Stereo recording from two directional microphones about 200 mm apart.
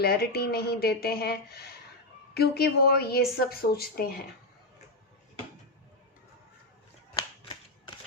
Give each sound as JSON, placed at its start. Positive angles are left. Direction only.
{"t": 0.0, "sound": "a woman's voice", "side_deg": 50}